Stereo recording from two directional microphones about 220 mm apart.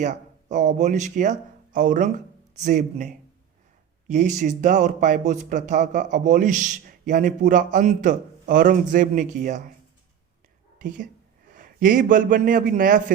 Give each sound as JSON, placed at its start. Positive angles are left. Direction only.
{"t": 0.0, "sound": "speech", "side_deg": -35}
{"t": 10.8, "sound": "speech", "side_deg": -35}